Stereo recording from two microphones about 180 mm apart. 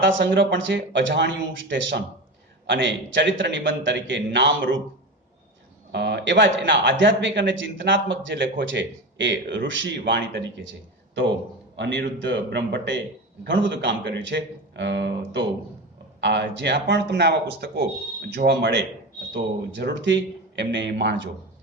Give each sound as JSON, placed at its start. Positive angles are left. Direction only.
{"t": 0.0, "sound": "a man's voice", "side_deg": -85}
{"t": 5.9, "sound": "a man's voice", "side_deg": -70}
{"t": 13.4, "sound": "speech", "side_deg": -90}
{"t": 19.8, "sound": "speech", "side_deg": -90}